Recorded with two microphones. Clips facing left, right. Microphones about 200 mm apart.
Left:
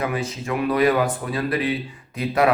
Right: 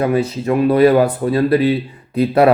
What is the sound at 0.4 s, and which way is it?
Speech, 35° right (ahead or behind).